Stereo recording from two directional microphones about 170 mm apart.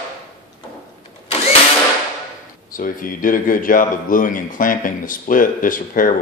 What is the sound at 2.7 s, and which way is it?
A man's voice, 55° left (ahead or behind).